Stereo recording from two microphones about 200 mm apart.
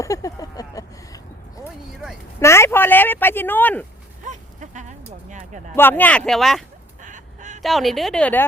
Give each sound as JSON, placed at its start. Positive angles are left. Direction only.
{"t": 0.0, "sound": "a sound", "side_deg": 15}
{"t": 2.4, "sound": "speech", "side_deg": 15}
{"t": 4.3, "sound": "a sound", "side_deg": -35}
{"t": 5.7, "sound": "speech", "side_deg": 10}
{"t": 7.0, "sound": "fowl", "side_deg": -40}
{"t": 7.6, "sound": "speech", "side_deg": 0}